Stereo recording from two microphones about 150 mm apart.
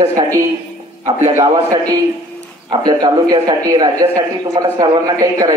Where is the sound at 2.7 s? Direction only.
25° right (ahead or behind).